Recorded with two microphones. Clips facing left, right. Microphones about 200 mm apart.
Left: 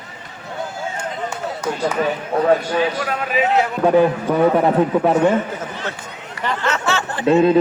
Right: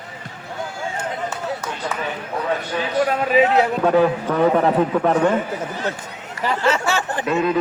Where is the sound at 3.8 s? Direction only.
15° left (ahead or behind).